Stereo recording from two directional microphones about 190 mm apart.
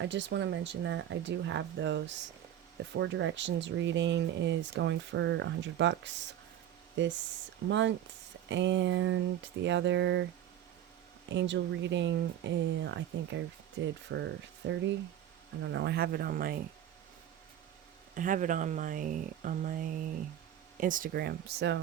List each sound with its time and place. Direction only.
0.0 s speech: 70° right (ahead or behind)
7.7 s speech: 75° right (ahead or behind)
11.3 s speech: 70° right (ahead or behind); by 16.6 s 50° right (ahead or behind)
18.1 s speech: 45° right (ahead or behind); by 21.8 s 60° right (ahead or behind)